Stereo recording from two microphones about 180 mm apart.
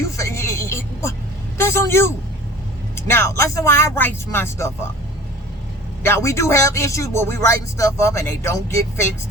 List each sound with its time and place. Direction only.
0.0 s music: 15° left (ahead or behind)
1.5 s a man's voice: 15° left (ahead or behind)
6.0 s a man's voice: 15° left (ahead or behind)